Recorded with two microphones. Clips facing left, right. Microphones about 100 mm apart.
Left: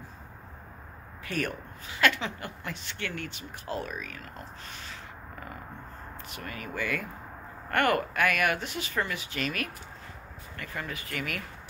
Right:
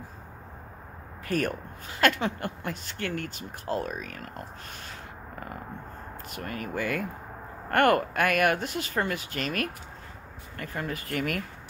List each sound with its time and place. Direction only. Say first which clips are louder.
1.2 s speech: right 4 dB; 45° right (ahead or behind)
6.3 s speech: right 5 dB; 45° right (ahead or behind)